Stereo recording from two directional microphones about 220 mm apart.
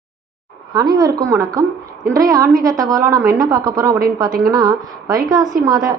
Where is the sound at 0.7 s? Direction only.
15° right (ahead or behind).